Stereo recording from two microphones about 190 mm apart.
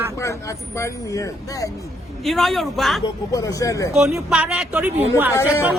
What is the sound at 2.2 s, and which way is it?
Speech, centre (ahead or behind).